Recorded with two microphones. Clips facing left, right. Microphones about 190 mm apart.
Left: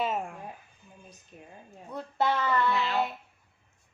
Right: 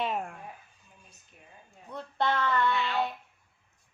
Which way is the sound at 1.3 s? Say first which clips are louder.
Left 8 dB; 30° left (ahead or behind).